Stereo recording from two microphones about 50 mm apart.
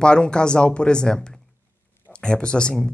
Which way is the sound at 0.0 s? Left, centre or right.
Centre.